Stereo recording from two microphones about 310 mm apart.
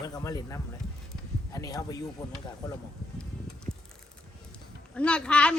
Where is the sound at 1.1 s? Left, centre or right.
Centre.